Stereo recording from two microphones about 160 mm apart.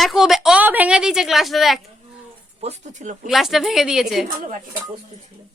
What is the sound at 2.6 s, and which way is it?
Speech, 45° right (ahead or behind).